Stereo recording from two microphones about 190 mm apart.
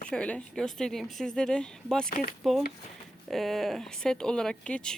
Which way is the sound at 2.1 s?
45° left (ahead or behind).